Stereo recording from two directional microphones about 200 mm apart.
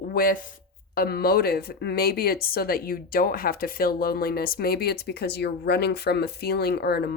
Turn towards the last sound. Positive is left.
turn(degrees=55)  # may be behind; listen again after turning